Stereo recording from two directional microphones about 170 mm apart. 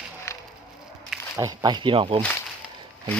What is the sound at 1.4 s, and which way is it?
Speech, 20° right (ahead or behind).